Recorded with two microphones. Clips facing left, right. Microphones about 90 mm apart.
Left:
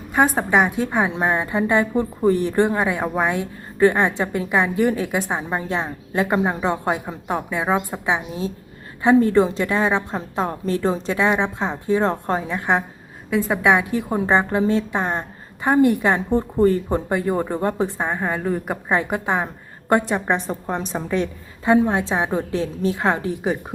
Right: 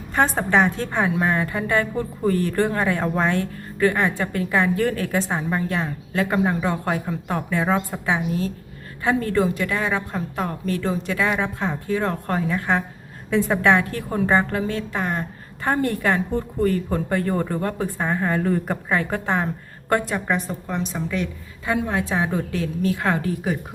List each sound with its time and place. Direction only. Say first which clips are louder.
0.3 s a woman's voice: left 1 dB; 15° left (ahead or behind)